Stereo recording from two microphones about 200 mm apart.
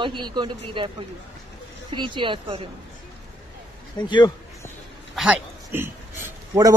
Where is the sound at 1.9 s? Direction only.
25° right (ahead or behind).